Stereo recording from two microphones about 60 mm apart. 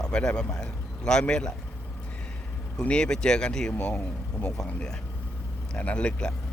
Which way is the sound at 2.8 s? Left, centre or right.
Centre.